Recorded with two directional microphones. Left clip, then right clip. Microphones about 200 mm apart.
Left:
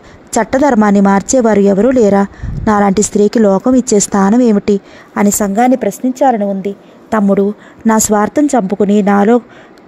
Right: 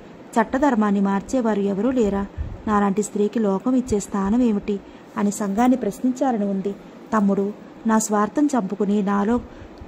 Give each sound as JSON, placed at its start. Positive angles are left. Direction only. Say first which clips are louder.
{"t": 0.3, "sound": "a woman's voice", "louder": "left 9 dB", "side_deg": 40}